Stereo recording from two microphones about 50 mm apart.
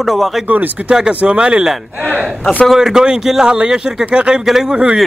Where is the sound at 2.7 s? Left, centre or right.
Centre.